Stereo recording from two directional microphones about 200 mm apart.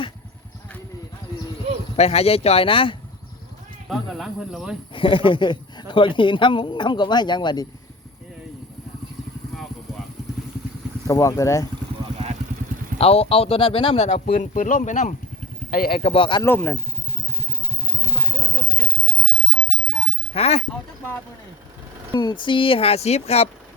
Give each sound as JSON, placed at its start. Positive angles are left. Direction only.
{"t": 2.0, "sound": "speech", "side_deg": 30}
{"t": 3.8, "sound": "speech", "side_deg": 0}
{"t": 4.9, "sound": "a man's voice", "side_deg": 25}
{"t": 11.0, "sound": "speech", "side_deg": 15}
{"t": 13.0, "sound": "a man's voice", "side_deg": 30}
{"t": 14.3, "sound": "speech", "side_deg": 45}
{"t": 16.0, "sound": "a man's voice", "side_deg": 25}
{"t": 16.5, "sound": "speech", "side_deg": 10}
{"t": 20.3, "sound": "speech", "side_deg": 30}
{"t": 22.1, "sound": "a man's voice", "side_deg": 20}